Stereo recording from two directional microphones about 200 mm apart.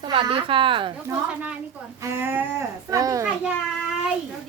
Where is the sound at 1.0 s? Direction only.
10° right (ahead or behind).